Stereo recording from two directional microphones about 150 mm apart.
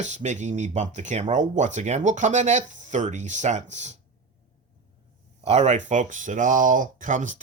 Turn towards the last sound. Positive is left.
turn(degrees=-55)  # may be behind; listen again after turning